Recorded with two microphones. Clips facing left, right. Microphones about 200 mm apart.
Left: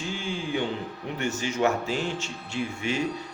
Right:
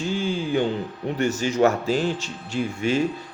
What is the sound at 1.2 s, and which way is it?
A man's voice, 40° right (ahead or behind).